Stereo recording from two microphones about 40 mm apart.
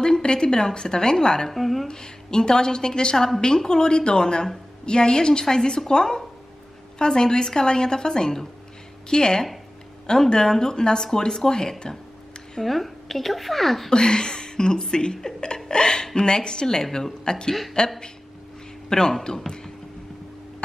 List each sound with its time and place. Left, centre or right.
0.0 s speech: left
1.5 s a woman's voice: centre
1.9 s speech: centre
12.6 s a woman's voice: centre
13.8 s speech: centre